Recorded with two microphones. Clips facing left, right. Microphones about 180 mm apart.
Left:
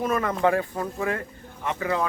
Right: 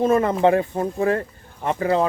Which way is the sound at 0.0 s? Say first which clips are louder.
Right 6 dB; 30° right (ahead or behind).